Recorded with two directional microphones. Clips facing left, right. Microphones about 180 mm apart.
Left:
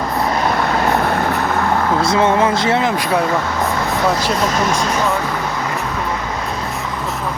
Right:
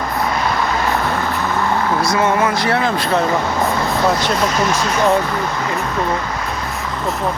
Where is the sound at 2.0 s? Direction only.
25° left (ahead or behind).